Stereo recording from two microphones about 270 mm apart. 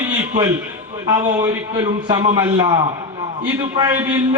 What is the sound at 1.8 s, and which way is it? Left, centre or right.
A man's voice, centre.